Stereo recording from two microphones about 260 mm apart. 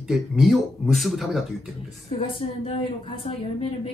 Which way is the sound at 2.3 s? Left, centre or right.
Left.